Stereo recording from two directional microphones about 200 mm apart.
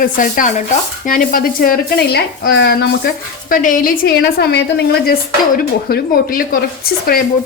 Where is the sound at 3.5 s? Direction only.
40° left (ahead or behind).